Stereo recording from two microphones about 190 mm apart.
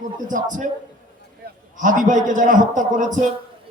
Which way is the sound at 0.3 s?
40° right (ahead or behind).